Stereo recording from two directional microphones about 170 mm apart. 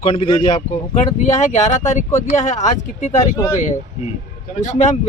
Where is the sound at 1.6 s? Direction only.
45° left (ahead or behind).